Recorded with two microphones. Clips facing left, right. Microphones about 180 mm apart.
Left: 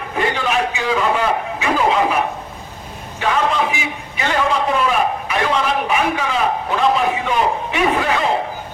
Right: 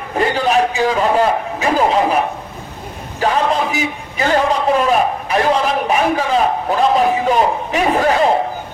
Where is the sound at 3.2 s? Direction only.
40° right (ahead or behind).